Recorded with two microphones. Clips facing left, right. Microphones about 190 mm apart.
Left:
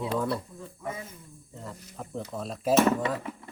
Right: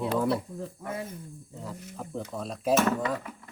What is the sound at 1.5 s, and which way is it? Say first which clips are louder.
Speech: right 1 dB; centre (ahead or behind).